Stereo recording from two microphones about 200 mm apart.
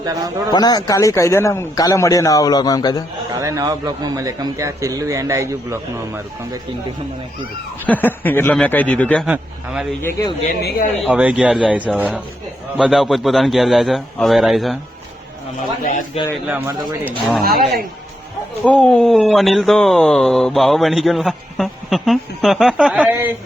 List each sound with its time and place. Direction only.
0.0 s a man's voice: 20° right (ahead or behind)
0.5 s a man's voice: 20° left (ahead or behind)
3.3 s a man's voice: 15° right (ahead or behind)
7.9 s a man's voice: 10° left (ahead or behind)
9.2 s speech: 5° right (ahead or behind)
10.0 s a man's voice: 15° left (ahead or behind)
10.4 s speech: 45° left (ahead or behind)
11.1 s speech: 5° right (ahead or behind)
15.8 s speech: 40° left (ahead or behind)
16.5 s a man's voice: 10° right (ahead or behind)
17.4 s a man's voice: 45° right (ahead or behind)
18.6 s speech: 5° left (ahead or behind)